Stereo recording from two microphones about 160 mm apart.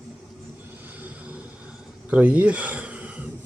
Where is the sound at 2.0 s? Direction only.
10° right (ahead or behind).